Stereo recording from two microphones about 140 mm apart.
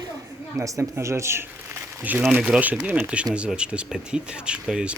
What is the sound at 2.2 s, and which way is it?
Speech, centre (ahead or behind).